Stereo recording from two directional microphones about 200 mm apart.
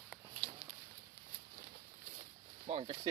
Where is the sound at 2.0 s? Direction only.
35° right (ahead or behind).